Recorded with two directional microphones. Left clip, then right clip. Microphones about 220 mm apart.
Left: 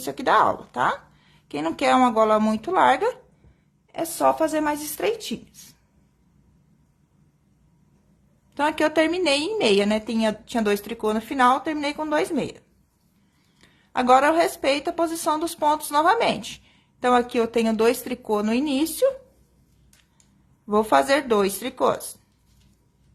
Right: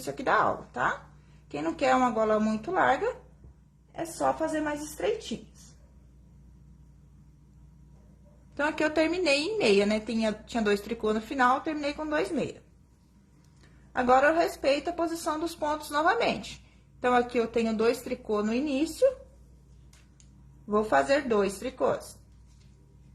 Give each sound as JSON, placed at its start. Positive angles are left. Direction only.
{"t": 0.0, "sound": "a woman's voice", "side_deg": 30}
{"t": 8.5, "sound": "a woman's voice", "side_deg": 25}
{"t": 13.9, "sound": "a woman's voice", "side_deg": 30}
{"t": 20.7, "sound": "speech", "side_deg": 30}